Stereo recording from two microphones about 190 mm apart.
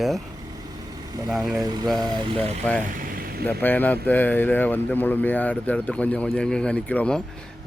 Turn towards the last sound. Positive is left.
turn(degrees=5)  # may be behind; listen again after turning